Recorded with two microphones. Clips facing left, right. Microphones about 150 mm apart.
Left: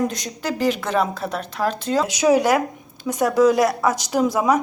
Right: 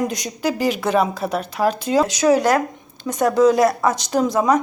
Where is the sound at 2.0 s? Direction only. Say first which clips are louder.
Even; 10° left (ahead or behind).